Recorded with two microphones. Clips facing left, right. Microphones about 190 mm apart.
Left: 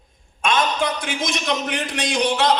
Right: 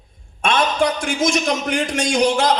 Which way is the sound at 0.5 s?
50° right (ahead or behind).